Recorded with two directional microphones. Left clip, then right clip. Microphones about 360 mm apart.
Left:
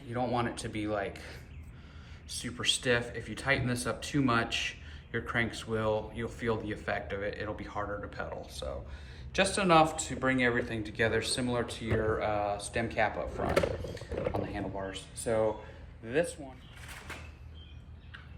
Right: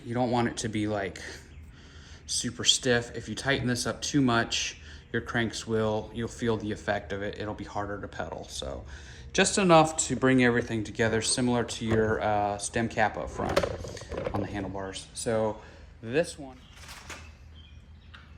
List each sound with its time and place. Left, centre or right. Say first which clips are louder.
0.1 s speech: right 4 dB; centre
14.5 s speech: right 2 dB; right